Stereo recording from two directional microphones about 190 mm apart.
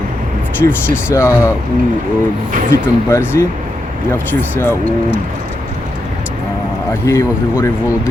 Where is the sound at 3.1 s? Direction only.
15° left (ahead or behind).